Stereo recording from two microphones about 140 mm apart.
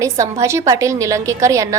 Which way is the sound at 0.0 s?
20° right (ahead or behind).